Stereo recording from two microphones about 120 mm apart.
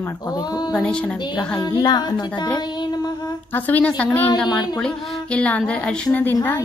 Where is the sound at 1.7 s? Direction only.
35° left (ahead or behind).